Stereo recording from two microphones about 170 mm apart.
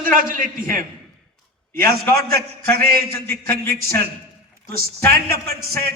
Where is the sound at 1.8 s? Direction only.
60° right (ahead or behind).